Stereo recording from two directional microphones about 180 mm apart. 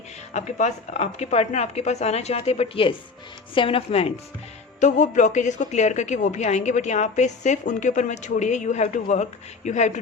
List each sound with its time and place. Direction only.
0.3 s a woman's voice: 40° left (ahead or behind)
4.8 s a woman's voice: 45° left (ahead or behind)